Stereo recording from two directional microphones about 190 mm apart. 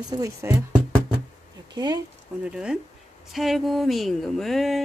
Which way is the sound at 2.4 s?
5° right (ahead or behind).